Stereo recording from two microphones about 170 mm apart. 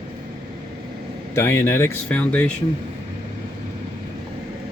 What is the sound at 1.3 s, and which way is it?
Speech, 15° left (ahead or behind).